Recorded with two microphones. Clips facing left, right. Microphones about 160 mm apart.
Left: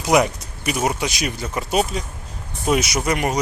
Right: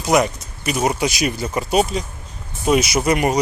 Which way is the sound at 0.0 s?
10° left (ahead or behind).